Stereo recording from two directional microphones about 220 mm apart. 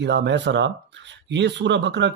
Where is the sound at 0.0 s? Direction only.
55° right (ahead or behind).